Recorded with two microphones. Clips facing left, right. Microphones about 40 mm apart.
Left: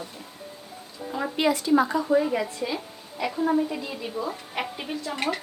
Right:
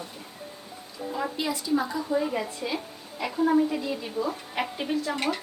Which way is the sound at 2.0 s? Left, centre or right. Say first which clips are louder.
Left 5 dB; left.